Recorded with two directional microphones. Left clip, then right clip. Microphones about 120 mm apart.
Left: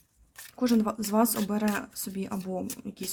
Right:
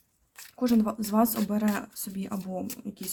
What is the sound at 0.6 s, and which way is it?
Speech, 20° left (ahead or behind).